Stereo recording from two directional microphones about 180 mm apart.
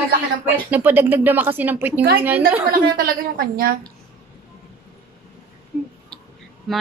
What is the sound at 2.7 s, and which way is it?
A woman's voice, 55° right (ahead or behind).